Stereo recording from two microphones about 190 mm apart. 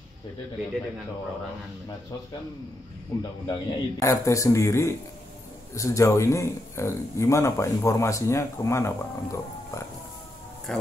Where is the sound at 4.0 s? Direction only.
15° left (ahead or behind).